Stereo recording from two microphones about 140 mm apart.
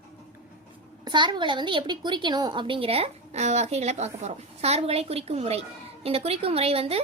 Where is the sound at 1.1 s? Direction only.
35° right (ahead or behind).